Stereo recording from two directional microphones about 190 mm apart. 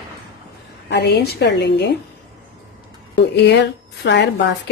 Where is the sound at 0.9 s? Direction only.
60° left (ahead or behind).